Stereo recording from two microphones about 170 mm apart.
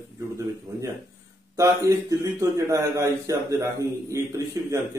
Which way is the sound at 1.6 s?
20° right (ahead or behind).